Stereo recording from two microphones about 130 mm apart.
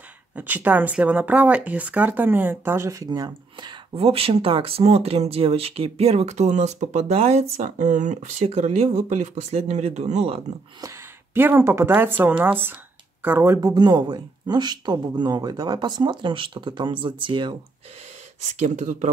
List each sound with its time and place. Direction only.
0.4 s speech: 15° right (ahead or behind); by 3.7 s 30° right (ahead or behind)
3.9 s speech: 50° right (ahead or behind)
11.3 s speech: 15° right (ahead or behind)
13.6 s speech: 30° right (ahead or behind)
18.5 s speech: 65° right (ahead or behind)